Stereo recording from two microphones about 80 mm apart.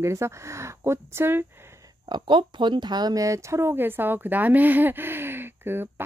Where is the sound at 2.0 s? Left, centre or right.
Right.